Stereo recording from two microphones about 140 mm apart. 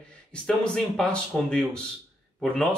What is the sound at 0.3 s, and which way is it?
Speech, 5° left (ahead or behind).